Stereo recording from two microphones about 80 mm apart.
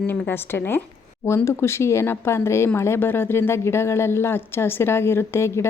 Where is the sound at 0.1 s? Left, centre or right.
Left.